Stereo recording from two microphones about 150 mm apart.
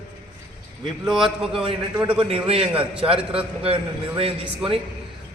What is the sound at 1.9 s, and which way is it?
Speech, 30° right (ahead or behind).